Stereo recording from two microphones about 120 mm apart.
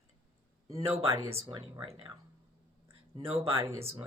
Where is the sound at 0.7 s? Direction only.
25° right (ahead or behind).